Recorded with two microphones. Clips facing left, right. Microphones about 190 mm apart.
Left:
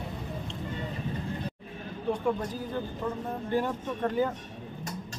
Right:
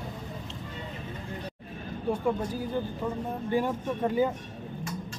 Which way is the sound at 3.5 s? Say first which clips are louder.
Right 2 dB; 10° right (ahead or behind).